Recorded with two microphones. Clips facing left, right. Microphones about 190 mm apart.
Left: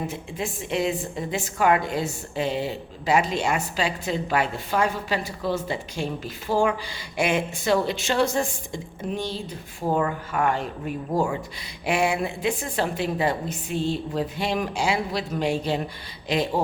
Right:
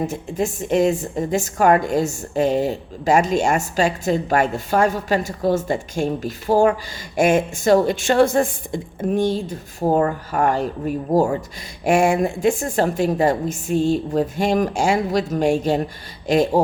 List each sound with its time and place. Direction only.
0.0 s a woman's voice: 45° right (ahead or behind)